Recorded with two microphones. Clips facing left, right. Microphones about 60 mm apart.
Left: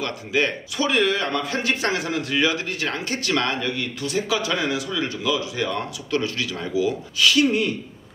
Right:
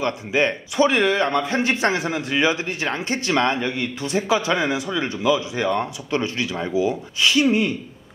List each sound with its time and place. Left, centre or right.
0.0 s a man's voice: right